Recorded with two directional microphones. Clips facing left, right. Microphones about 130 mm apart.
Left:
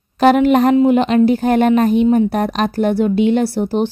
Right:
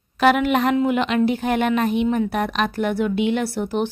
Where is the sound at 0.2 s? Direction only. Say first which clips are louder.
Left 6 dB; 35° left (ahead or behind).